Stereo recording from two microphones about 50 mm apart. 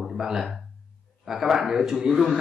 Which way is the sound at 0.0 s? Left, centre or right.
Centre.